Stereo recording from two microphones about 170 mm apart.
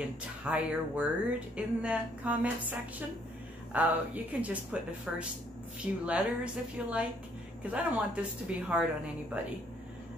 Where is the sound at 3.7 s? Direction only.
10° right (ahead or behind).